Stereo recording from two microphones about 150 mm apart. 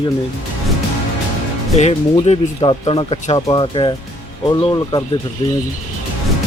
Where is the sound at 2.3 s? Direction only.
50° left (ahead or behind).